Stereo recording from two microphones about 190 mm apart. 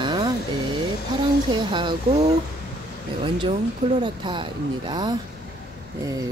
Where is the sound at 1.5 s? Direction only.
25° right (ahead or behind).